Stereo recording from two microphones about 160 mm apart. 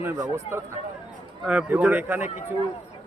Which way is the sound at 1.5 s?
5° right (ahead or behind).